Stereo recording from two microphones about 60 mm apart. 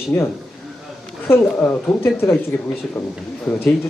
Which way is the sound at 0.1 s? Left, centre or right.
Left.